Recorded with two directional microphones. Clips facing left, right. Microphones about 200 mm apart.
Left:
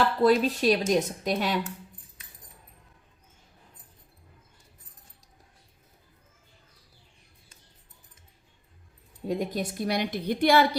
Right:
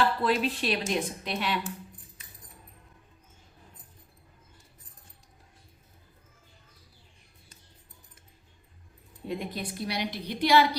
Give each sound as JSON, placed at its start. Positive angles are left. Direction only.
{"t": 0.2, "sound": "a woman's voice", "side_deg": 40}
{"t": 9.2, "sound": "a woman's voice", "side_deg": 45}